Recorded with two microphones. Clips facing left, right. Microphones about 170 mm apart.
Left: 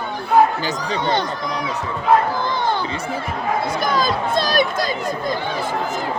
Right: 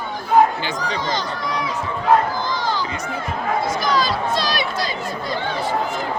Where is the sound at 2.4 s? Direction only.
60° left (ahead or behind).